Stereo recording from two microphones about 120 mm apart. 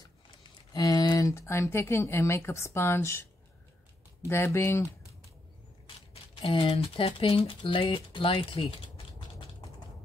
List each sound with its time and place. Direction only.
0.4 s speech: 35° left (ahead or behind)
6.5 s speech: 50° left (ahead or behind)